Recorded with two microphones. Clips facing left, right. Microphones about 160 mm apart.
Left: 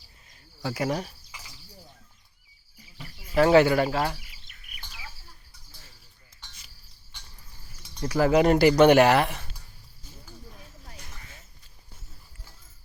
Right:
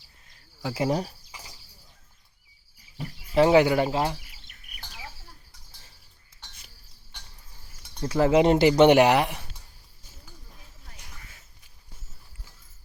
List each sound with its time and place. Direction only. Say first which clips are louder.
0.7 s cricket: right 2 dB; 30° right (ahead or behind)
3.3 s speech: even; 20° right (ahead or behind)
6.4 s a sound: right 1 dB; 55° right (ahead or behind)
8.0 s speech: right 1 dB; 25° right (ahead or behind)